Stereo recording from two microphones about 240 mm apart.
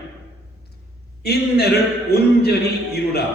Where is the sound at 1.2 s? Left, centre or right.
Left.